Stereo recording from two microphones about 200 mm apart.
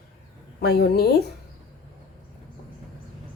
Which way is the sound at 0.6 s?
55° left (ahead or behind).